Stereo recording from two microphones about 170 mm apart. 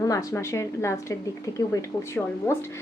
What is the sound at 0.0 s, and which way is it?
A woman's voice, 20° left (ahead or behind).